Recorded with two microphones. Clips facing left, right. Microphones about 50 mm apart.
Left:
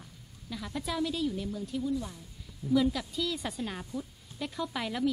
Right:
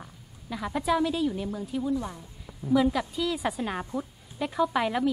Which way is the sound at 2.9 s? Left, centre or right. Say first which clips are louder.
Right 5 dB; centre.